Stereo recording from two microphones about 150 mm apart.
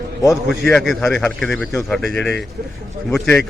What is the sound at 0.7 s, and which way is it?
A man's voice, centre (ahead or behind).